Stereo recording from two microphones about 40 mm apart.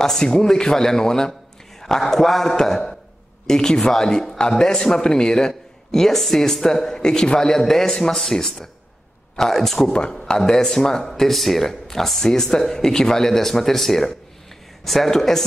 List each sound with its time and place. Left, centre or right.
0.0 s a man's voice: centre